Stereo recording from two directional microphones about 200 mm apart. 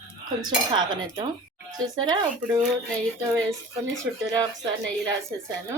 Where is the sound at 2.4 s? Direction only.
5° right (ahead or behind).